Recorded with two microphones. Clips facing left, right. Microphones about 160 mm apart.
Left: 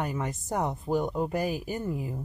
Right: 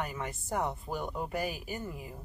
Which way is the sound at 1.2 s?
35° left (ahead or behind).